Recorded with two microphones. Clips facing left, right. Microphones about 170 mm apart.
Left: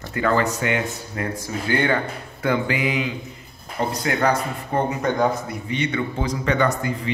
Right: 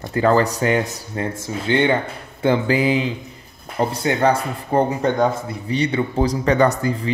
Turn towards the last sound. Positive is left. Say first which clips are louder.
# right 4 dB
turn(degrees=-35)  # may be behind; listen again after turning